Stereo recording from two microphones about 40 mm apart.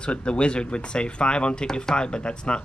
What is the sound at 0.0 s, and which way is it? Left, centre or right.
Speech, left.